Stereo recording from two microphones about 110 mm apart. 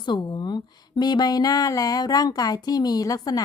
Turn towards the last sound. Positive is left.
turn(degrees=35)  # may be behind; listen again after turning